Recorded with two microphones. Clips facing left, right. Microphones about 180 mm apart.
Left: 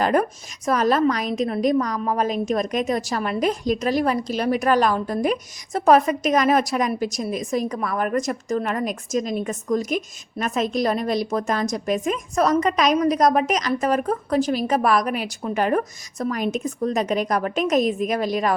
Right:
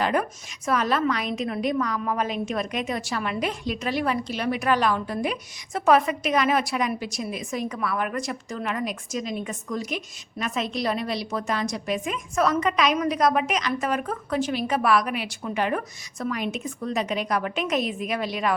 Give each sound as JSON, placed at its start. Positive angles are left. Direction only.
{"t": 0.0, "sound": "a woman's voice", "side_deg": 45}